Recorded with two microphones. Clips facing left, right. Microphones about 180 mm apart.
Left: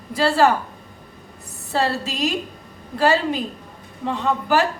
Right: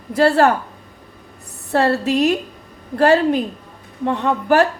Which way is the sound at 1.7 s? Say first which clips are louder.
Right 6 dB; 60° right (ahead or behind).